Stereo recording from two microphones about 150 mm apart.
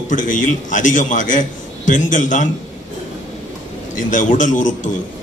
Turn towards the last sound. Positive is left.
turn(degrees=55)  # may be behind; listen again after turning